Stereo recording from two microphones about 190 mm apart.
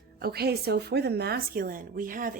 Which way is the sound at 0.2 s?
55° right (ahead or behind).